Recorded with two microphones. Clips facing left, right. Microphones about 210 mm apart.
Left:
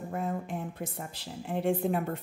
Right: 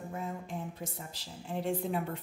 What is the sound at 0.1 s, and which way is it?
Speech, 55° left (ahead or behind).